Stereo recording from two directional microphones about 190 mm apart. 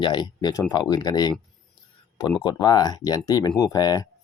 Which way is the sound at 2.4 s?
20° left (ahead or behind).